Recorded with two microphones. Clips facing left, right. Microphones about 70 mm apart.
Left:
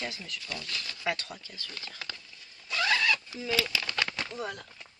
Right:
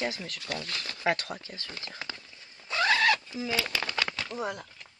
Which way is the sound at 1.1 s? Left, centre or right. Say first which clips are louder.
Right 4 dB; right.